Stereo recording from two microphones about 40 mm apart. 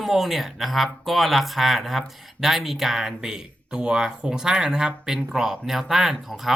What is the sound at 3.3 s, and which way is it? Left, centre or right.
Speech, centre.